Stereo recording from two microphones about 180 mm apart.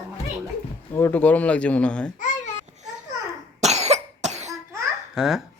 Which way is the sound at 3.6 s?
40° right (ahead or behind).